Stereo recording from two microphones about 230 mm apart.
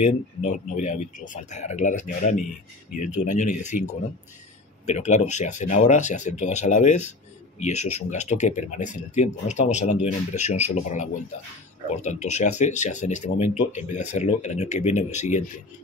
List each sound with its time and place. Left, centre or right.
0.0 s speech: left
4.8 s speech: left